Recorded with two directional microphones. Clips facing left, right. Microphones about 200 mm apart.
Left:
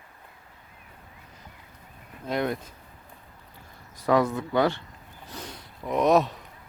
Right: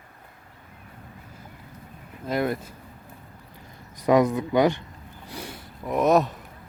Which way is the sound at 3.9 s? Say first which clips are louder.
Right 3 dB; 15° right (ahead or behind).